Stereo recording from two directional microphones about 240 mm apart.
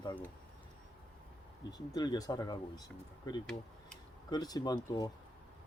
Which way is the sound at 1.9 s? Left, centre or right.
Centre.